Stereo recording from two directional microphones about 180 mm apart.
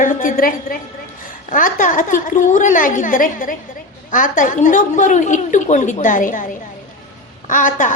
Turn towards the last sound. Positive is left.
turn(degrees=45)  # may be behind; listen again after turning